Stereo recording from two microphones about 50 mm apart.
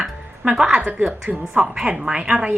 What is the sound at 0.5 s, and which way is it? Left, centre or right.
Speech, centre.